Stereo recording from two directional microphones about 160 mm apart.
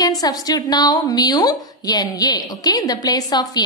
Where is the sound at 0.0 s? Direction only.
25° left (ahead or behind).